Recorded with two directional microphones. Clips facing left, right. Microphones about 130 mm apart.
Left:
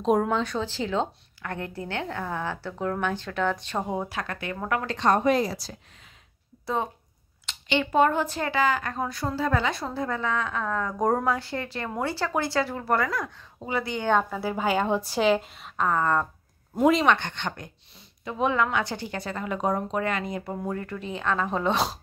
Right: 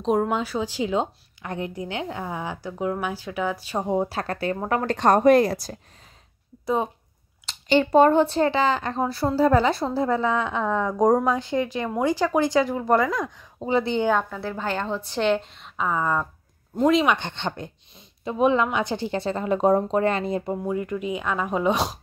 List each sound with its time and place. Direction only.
0.0 s a woman's voice: centre (ahead or behind)
3.9 s speech: 30° right (ahead or behind)
4.8 s a woman's voice: 45° right (ahead or behind)
6.6 s speech: 20° right (ahead or behind)
7.4 s a woman's voice: 35° right (ahead or behind)
14.3 s a woman's voice: 10° left (ahead or behind); by 16.3 s 5° right (ahead or behind)
16.7 s a woman's voice: 5° left (ahead or behind)
17.2 s speech: 25° right (ahead or behind)
20.6 s a woman's voice: 15° right (ahead or behind)